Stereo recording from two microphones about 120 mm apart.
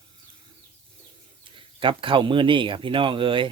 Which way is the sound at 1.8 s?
45° right (ahead or behind).